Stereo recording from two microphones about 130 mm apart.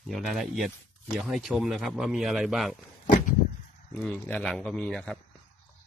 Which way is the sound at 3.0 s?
90° left.